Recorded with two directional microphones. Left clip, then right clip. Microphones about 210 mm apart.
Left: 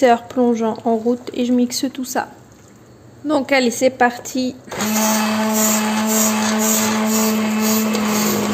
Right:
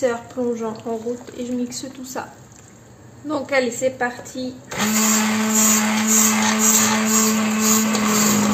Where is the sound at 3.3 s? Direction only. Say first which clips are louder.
Left 4 dB; 45° left (ahead or behind).